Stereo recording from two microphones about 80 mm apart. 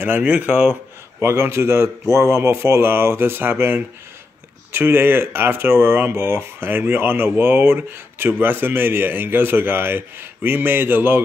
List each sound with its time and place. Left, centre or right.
0.0 s a man's voice: right